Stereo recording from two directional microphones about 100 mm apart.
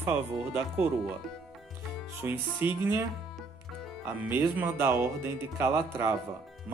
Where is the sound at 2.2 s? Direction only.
20° right (ahead or behind).